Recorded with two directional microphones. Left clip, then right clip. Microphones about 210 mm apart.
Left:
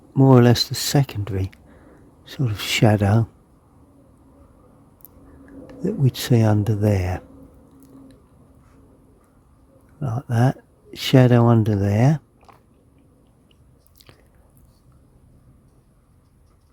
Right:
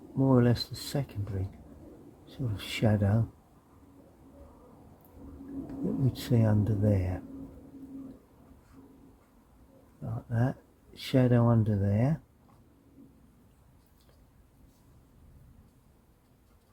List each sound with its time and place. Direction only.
0.2 s speech: 55° left (ahead or behind)
6.1 s speech: 55° left (ahead or behind)
10.2 s speech: 60° left (ahead or behind)